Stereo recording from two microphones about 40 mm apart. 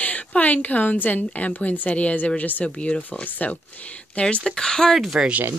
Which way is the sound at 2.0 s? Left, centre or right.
Left.